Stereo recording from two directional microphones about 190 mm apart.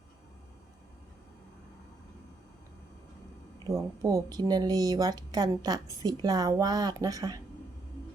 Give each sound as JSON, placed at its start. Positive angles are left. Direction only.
{"t": 3.7, "sound": "speech", "side_deg": -15}